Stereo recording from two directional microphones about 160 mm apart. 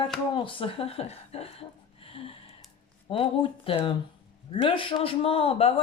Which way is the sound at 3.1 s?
35° left (ahead or behind).